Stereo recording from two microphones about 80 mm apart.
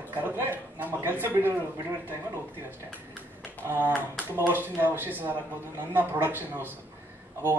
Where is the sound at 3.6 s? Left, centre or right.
Right.